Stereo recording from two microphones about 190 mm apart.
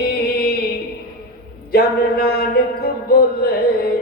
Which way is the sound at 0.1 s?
55° left (ahead or behind).